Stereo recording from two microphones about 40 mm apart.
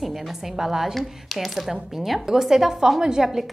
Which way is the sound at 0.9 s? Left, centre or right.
Centre.